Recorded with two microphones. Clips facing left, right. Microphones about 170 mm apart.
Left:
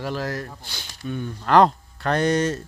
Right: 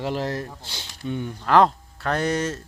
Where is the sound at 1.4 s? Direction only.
Centre (ahead or behind).